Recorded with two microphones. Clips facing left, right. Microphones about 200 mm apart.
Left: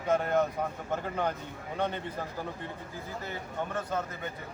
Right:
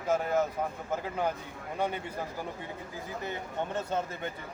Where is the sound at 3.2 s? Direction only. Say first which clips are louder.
Right 2 dB; 25° right (ahead or behind).